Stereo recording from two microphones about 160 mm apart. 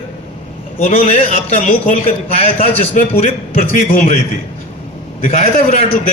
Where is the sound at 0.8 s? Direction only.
45° left (ahead or behind).